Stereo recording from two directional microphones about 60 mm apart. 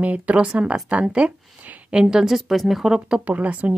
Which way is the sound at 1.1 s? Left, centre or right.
Centre.